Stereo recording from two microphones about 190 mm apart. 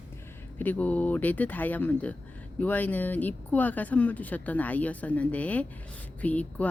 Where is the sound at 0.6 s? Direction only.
10° left (ahead or behind).